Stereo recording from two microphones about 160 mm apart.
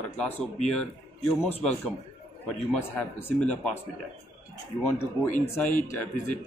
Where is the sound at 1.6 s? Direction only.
10° left (ahead or behind).